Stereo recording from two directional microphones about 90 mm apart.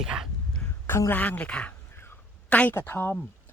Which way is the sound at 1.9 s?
25° left (ahead or behind).